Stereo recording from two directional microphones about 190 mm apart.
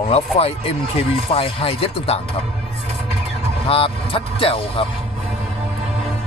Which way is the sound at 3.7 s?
30° left (ahead or behind).